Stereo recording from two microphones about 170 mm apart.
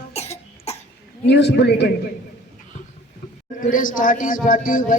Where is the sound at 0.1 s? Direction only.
40° left (ahead or behind).